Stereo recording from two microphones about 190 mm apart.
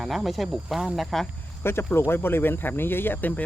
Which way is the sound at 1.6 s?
10° left (ahead or behind).